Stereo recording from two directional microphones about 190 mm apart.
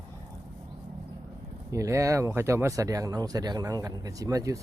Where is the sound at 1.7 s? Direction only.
15° right (ahead or behind).